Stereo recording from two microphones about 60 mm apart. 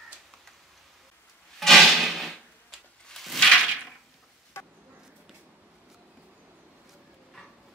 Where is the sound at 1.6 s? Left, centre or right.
Centre.